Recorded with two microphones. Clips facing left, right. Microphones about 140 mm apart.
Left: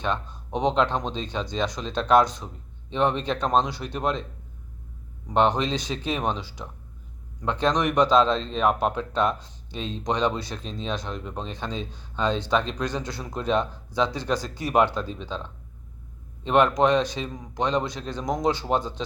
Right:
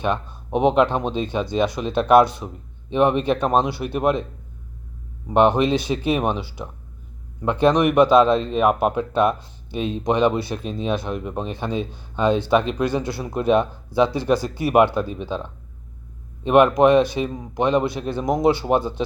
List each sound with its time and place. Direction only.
0.0 s speech: 10° right (ahead or behind)
5.3 s speech: 10° right (ahead or behind)
5.6 s speech: 60° right (ahead or behind)
6.1 s speech: 10° right (ahead or behind)
7.4 s speech: 10° right (ahead or behind)